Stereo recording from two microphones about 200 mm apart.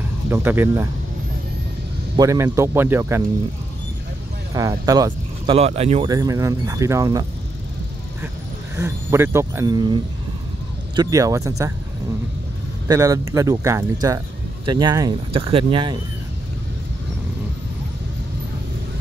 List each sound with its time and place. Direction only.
0.3 s speech: 10° right (ahead or behind)
2.1 s speech: 15° right (ahead or behind)
4.6 s speech: 20° right (ahead or behind)
5.6 s speech: 30° right (ahead or behind)
6.0 s speech: 20° right (ahead or behind)
8.7 s speech: 15° right (ahead or behind)
11.0 s speech: 15° right (ahead or behind)
12.8 s a man's voice: 15° right (ahead or behind)